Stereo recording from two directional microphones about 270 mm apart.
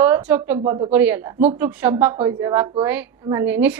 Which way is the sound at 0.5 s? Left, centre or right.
Centre.